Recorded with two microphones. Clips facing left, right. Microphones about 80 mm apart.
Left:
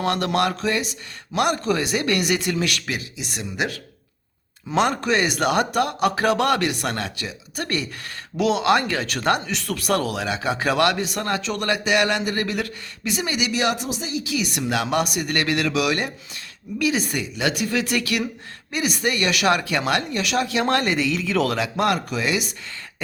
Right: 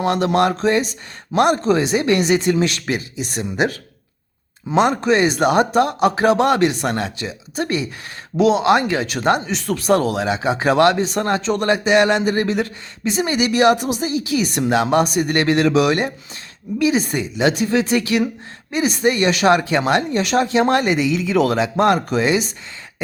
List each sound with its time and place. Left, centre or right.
0.0 s speech: centre; by 3.8 s right
4.7 s speech: right